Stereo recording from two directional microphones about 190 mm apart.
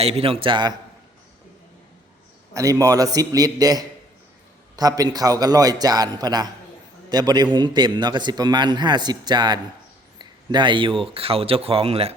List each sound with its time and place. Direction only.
0.0 s speech: 30° right (ahead or behind)
2.5 s speech: 15° right (ahead or behind)